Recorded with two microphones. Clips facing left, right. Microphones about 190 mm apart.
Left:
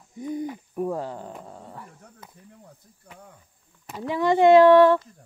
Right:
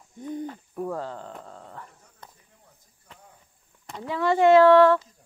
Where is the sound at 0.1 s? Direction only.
10° left (ahead or behind).